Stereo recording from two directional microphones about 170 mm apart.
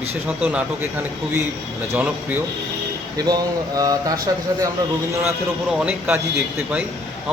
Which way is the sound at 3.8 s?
20° right (ahead or behind).